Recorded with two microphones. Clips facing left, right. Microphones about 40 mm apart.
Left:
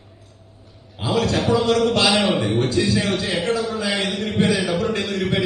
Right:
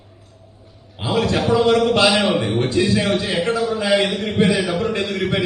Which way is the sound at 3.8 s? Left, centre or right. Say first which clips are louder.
Right 6 dB; right.